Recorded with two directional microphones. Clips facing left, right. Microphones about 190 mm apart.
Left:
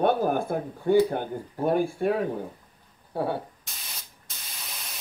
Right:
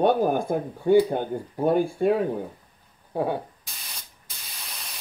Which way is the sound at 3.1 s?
15° right (ahead or behind).